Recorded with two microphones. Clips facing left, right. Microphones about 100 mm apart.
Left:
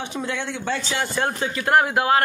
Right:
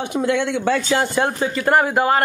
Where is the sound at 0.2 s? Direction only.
70° right (ahead or behind).